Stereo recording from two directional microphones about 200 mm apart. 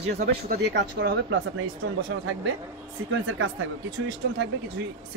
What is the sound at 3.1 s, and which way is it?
Speech, 80° right.